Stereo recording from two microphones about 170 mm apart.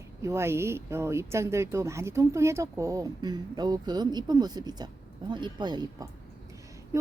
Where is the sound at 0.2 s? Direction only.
15° right (ahead or behind).